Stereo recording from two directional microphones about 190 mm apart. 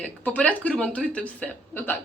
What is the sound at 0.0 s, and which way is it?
A woman's voice, 10° left (ahead or behind).